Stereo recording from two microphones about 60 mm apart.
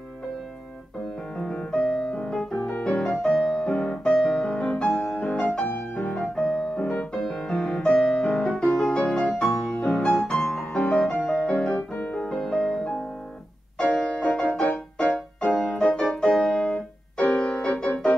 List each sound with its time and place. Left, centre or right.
1.3 s music: centre
4.1 s music: centre
7.2 s music: centre
11.7 s music: left
12.2 s music: centre
13.9 s music: centre
14.6 s music: left
15.4 s music: centre
16.5 s keyboard: centre
17.6 s music: centre